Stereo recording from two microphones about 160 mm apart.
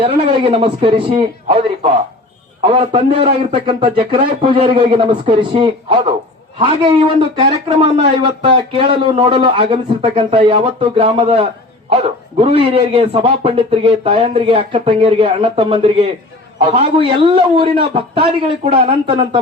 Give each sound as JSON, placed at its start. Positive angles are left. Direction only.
{"t": 0.0, "sound": "a man's voice", "side_deg": -35}
{"t": 2.9, "sound": "a man's voice", "side_deg": -30}